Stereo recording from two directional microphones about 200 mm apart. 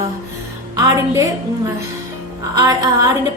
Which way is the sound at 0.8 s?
15° right (ahead or behind).